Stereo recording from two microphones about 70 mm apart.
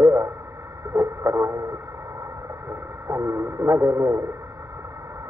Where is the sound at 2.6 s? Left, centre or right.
Right.